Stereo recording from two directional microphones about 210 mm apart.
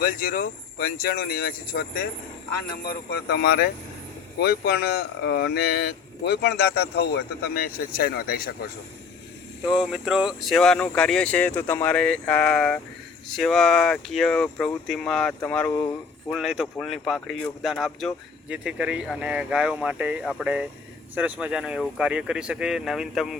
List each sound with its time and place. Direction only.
0.0 s speech: 45° left (ahead or behind)
2.8 s speech: 50° left (ahead or behind)
9.6 s speech: centre (ahead or behind)